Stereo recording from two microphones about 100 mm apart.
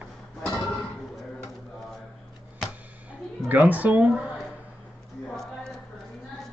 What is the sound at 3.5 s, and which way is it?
Speech, 15° right (ahead or behind).